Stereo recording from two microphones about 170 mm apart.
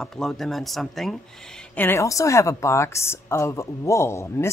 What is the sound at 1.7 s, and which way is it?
Speech, 15° left (ahead or behind).